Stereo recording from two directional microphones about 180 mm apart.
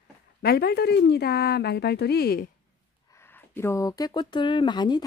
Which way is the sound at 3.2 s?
10° left (ahead or behind).